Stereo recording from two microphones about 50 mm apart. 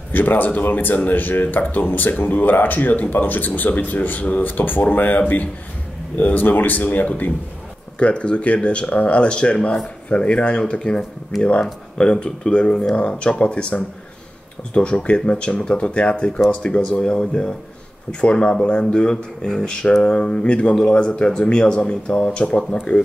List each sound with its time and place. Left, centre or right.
0.1 s speech: left
8.0 s speech: left
11.3 s speech: centre
12.0 s speech: centre